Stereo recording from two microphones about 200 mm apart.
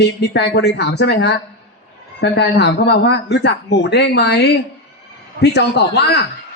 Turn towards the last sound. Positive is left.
turn(degrees=55)  # may be behind; listen again after turning